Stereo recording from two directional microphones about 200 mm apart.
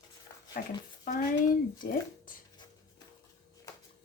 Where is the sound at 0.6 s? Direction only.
45° left (ahead or behind).